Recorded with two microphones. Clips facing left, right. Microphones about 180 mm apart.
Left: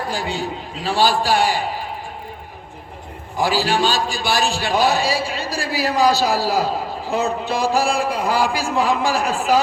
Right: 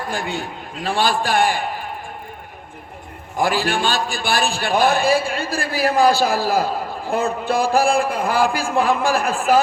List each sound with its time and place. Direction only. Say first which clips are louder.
0.1 s a man's voice: left 1 dB; 55° right (ahead or behind)
3.3 s a man's voice: left 1 dB; 50° right (ahead or behind)